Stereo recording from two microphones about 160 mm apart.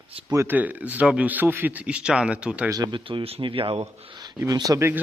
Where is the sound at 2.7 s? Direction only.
25° right (ahead or behind).